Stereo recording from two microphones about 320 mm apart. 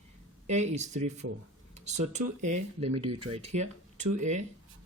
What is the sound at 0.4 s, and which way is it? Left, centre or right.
Speech, right.